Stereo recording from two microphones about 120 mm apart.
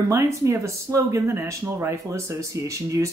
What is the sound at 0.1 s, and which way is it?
Speech, 25° right (ahead or behind).